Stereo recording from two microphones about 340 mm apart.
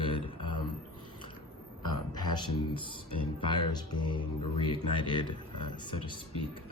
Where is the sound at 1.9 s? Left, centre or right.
Centre.